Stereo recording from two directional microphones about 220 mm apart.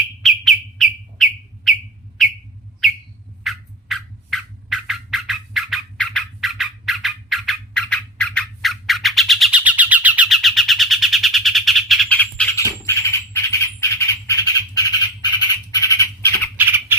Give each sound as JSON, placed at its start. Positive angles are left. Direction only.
{"t": 0.2, "sound": "bird", "side_deg": 0}
{"t": 2.2, "sound": "a sound", "side_deg": 0}
{"t": 3.4, "sound": "turkey", "side_deg": 0}
{"t": 15.7, "sound": "squawk", "side_deg": 15}
{"t": 16.6, "sound": "squawk", "side_deg": -10}